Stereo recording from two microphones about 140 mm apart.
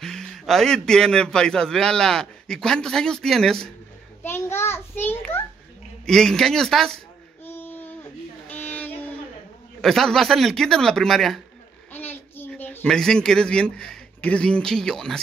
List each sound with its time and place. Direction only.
0.0 s a man's voice: 5° left (ahead or behind)
4.2 s a sound: 15° left (ahead or behind)
6.0 s a man's voice: 5° left (ahead or behind)
7.4 s a sound: 15° left (ahead or behind)
8.5 s child singing: 10° left (ahead or behind)
9.8 s a man's voice: centre (ahead or behind)
11.9 s a child's voice: 15° left (ahead or behind)